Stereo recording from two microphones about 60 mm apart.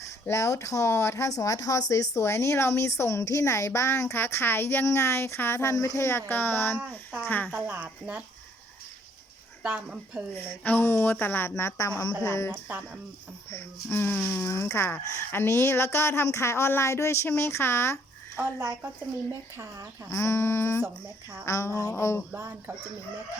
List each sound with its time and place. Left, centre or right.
0.3 s speech: left
1.3 s speech: left
9.6 s speech: centre
10.6 s speech: left
10.8 s speech: left
11.9 s a woman's voice: left
12.2 s speech: left
13.5 s speech: left
14.3 s speech: left
20.1 s speech: left
22.4 s speech: right